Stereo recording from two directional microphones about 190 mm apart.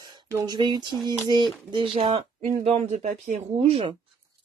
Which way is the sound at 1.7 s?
30° right (ahead or behind).